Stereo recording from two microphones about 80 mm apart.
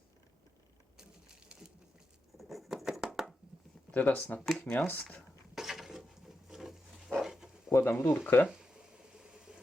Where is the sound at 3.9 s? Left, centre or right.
Left.